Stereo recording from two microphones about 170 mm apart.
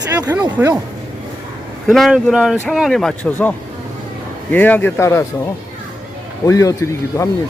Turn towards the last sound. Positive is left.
turn(degrees=20)  # may be behind; listen again after turning